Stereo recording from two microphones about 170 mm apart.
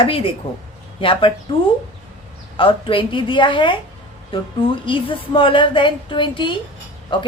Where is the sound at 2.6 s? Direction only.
30° left (ahead or behind).